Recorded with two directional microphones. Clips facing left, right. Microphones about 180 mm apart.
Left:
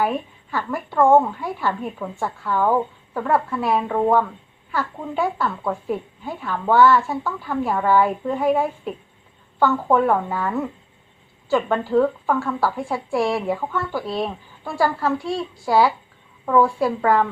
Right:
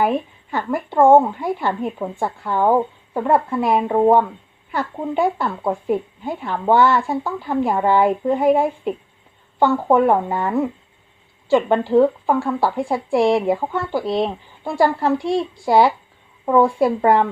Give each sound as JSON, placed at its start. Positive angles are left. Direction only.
{"t": 0.0, "sound": "speech", "side_deg": -20}
{"t": 1.4, "sound": "a woman's voice", "side_deg": -20}
{"t": 13.6, "sound": "speech", "side_deg": -30}